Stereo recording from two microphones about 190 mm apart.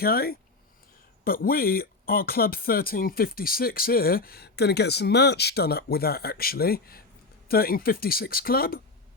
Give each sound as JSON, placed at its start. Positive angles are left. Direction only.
{"t": 0.0, "sound": "speech", "side_deg": 50}